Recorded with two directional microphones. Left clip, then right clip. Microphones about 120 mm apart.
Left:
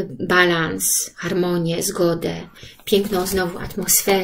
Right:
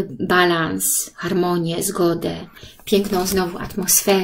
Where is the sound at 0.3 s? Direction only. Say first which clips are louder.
Even; 45° right (ahead or behind).